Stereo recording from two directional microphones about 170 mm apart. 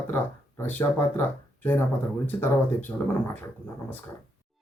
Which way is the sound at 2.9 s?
10° left (ahead or behind).